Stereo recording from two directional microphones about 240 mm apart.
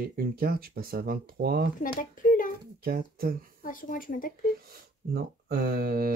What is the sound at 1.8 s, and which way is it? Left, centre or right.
Speech, left.